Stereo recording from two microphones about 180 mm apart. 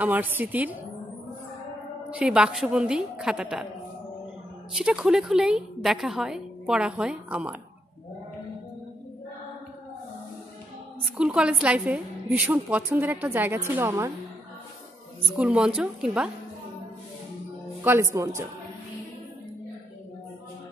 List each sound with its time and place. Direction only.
0.0 s a woman's voice: 10° right (ahead or behind)
2.0 s a woman's voice: 5° right (ahead or behind)
4.7 s a woman's voice: 5° right (ahead or behind)
11.1 s a woman's voice: 5° right (ahead or behind)
15.3 s a woman's voice: 5° right (ahead or behind)
17.8 s a woman's voice: 15° right (ahead or behind)